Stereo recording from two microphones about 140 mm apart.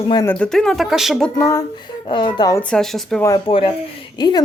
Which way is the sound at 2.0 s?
35° left (ahead or behind).